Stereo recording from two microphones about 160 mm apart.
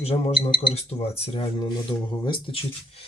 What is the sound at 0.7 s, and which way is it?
Speech, 40° left (ahead or behind).